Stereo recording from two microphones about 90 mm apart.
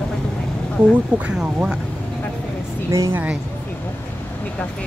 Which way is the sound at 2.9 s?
35° right (ahead or behind).